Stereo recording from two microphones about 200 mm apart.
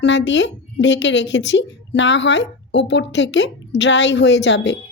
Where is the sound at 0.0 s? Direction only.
65° left (ahead or behind).